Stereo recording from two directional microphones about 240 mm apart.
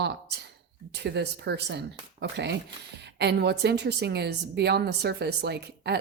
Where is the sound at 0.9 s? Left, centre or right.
Right.